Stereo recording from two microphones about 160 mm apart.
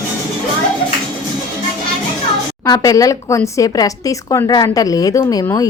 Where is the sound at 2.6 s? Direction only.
20° left (ahead or behind).